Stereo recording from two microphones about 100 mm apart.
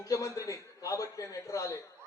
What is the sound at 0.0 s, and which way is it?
Speech, 30° left (ahead or behind).